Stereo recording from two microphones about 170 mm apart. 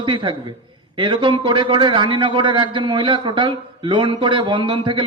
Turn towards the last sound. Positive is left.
turn(degrees=-30)  # may be behind; listen again after turning